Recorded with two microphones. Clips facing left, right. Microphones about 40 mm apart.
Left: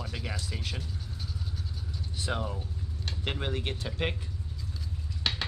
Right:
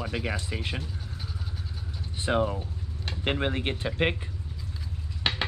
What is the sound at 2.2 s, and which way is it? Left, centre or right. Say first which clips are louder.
Speech: right 8 dB; right.